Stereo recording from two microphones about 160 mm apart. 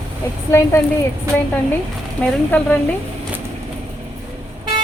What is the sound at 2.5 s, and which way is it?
Speech, 10° left (ahead or behind).